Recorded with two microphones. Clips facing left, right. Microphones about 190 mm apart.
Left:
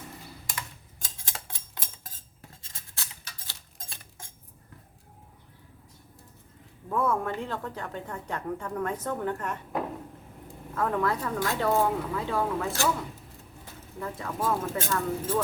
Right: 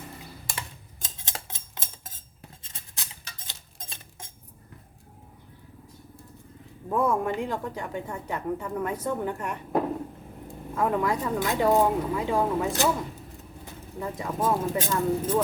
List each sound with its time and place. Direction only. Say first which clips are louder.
1.0 s a sound: right 2 dB; 20° right (ahead or behind)
6.8 s speech: right 3 dB; 15° right (ahead or behind)
10.8 s speech: right 2 dB; 15° right (ahead or behind)
14.0 s speech: right 3 dB; 15° right (ahead or behind)